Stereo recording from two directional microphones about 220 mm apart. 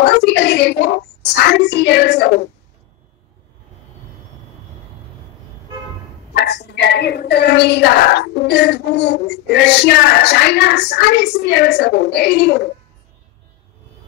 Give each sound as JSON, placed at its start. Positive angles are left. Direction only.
{"t": 0.0, "sound": "a child's voice", "side_deg": 50}
{"t": 6.3, "sound": "a woman's voice", "side_deg": 50}